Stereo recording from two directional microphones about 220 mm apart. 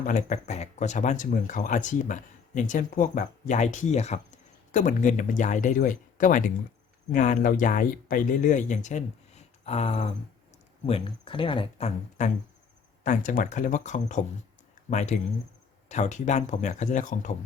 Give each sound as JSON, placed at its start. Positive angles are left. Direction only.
{"t": 0.0, "sound": "speech", "side_deg": 35}